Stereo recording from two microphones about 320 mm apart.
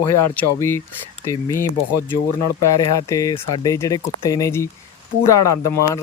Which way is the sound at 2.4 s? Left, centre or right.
Left.